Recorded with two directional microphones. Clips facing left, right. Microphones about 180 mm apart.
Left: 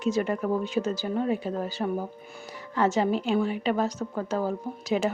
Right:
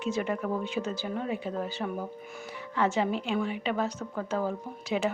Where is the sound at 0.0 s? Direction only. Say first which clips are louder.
Left 4 dB; 40° left (ahead or behind).